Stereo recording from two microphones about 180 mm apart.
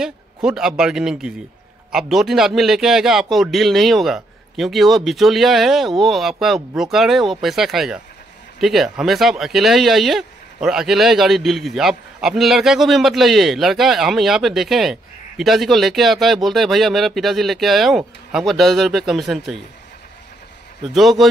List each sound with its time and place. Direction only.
0.0 s speech: 5° right (ahead or behind)
20.8 s speech: centre (ahead or behind)